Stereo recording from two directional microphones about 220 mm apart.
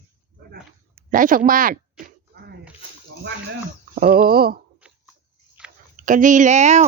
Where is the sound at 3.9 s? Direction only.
40° right (ahead or behind).